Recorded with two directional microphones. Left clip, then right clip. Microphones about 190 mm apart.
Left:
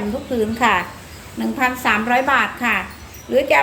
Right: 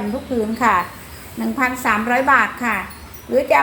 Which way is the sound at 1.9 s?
30° left (ahead or behind).